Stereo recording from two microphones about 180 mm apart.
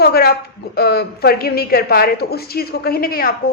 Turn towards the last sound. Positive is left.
turn(degrees=55)  # may be behind; listen again after turning